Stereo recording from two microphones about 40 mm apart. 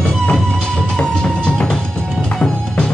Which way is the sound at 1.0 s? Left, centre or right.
Left.